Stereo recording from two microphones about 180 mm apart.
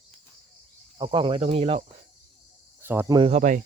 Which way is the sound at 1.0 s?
30° right (ahead or behind).